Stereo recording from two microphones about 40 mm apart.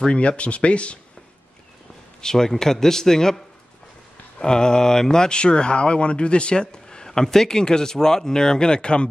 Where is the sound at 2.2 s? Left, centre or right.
Centre.